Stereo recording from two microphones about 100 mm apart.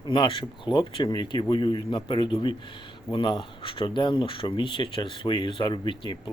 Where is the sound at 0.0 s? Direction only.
60° left (ahead or behind).